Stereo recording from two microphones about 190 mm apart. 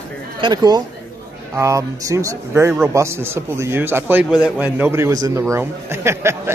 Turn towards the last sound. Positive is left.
turn(degrees=-15)  # may be behind; listen again after turning